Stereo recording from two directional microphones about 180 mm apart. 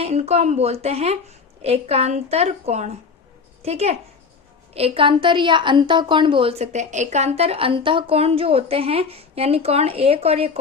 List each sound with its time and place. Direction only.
0.0 s a woman's voice: 35° right (ahead or behind)